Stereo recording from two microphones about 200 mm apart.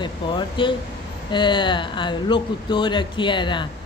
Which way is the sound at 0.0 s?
25° left (ahead or behind).